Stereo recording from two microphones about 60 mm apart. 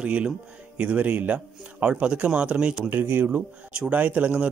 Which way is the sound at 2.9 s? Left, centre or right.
Right.